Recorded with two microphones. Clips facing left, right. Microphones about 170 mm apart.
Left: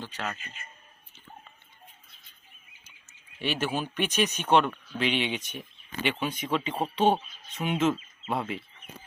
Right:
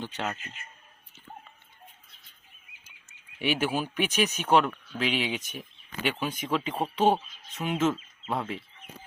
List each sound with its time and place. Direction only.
0.0 s speech: 20° right (ahead or behind)
3.3 s speech: 10° right (ahead or behind)